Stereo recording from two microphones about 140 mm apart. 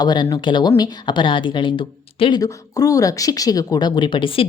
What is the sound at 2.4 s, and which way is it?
A woman's voice, 25° left (ahead or behind).